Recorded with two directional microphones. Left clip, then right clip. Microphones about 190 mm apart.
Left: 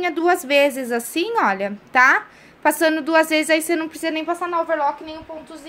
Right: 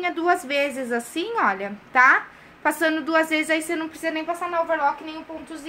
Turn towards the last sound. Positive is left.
turn(degrees=45)  # may be behind; listen again after turning